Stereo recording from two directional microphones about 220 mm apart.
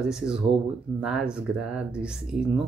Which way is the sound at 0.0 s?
5° right (ahead or behind).